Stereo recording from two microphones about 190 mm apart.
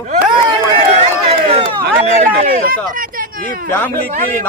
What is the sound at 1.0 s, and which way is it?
Run, 30° right (ahead or behind).